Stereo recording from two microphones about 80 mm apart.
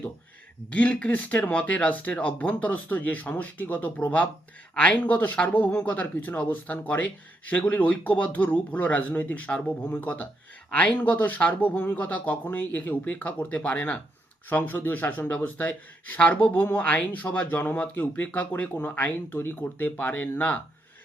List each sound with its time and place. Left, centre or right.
0.7 s speech: centre